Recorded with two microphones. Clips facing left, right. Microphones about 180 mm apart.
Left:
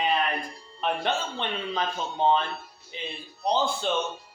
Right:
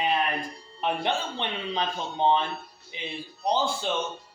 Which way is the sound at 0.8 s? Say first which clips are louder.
Even; 15° right (ahead or behind).